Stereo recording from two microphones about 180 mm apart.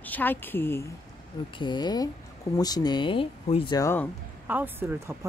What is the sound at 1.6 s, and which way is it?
Speech, 25° left (ahead or behind).